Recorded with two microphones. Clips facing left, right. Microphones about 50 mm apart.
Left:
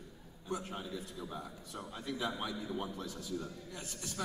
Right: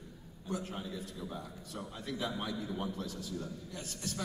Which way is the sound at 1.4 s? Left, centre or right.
Centre.